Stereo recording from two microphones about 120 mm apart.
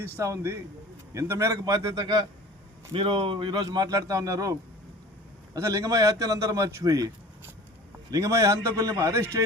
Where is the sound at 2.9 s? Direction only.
45° right (ahead or behind); by 4.5 s 30° right (ahead or behind).